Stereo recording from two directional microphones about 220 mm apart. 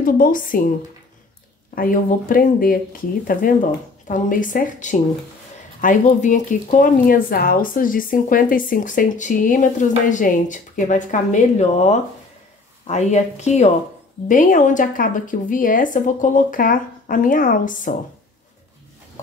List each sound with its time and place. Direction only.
0.0 s speech: 40° left (ahead or behind)
1.8 s speech: 40° left (ahead or behind)